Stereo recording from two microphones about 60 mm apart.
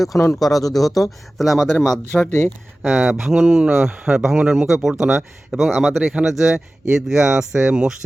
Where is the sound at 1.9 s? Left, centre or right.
Centre.